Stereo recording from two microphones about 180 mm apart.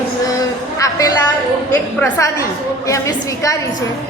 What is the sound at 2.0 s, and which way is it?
A woman's voice, 15° left (ahead or behind).